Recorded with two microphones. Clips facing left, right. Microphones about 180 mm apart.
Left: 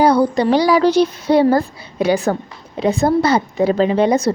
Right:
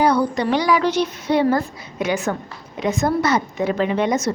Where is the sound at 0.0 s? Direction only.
30° left (ahead or behind).